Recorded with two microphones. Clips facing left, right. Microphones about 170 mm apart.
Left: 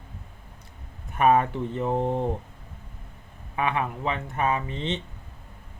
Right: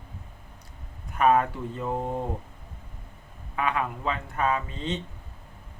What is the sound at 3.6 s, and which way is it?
Speech, 25° left (ahead or behind).